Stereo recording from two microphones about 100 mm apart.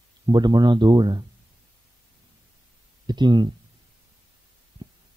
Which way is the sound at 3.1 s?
50° right (ahead or behind).